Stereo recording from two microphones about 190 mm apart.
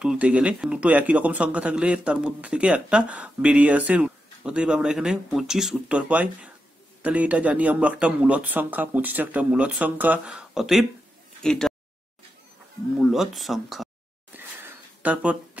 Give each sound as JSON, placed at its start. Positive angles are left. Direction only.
{"t": 0.0, "sound": "speech", "side_deg": -5}
{"t": 12.9, "sound": "speech", "side_deg": 0}
{"t": 14.3, "sound": "a sound", "side_deg": -10}